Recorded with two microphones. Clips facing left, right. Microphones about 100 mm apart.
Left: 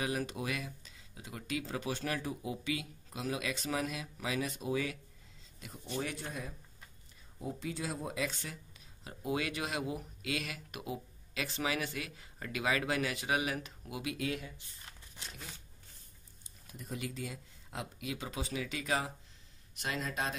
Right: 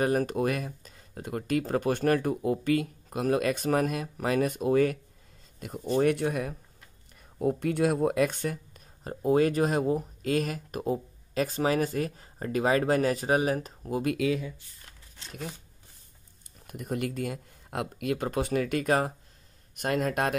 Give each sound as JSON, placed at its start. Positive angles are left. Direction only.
{"t": 0.0, "sound": "speech", "side_deg": -50}
{"t": 16.6, "sound": "speech", "side_deg": -60}